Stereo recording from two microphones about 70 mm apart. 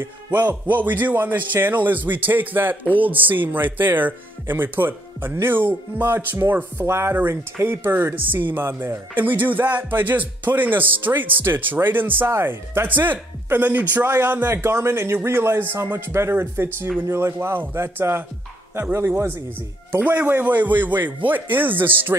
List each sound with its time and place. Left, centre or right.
0.0 s a man's voice: right